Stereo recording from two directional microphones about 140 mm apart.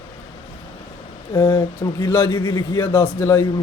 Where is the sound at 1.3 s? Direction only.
30° left (ahead or behind).